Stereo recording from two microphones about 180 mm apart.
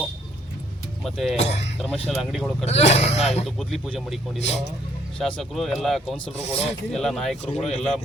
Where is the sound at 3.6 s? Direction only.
Centre (ahead or behind).